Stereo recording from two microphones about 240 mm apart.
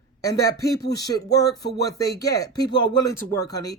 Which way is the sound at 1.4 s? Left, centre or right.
Left.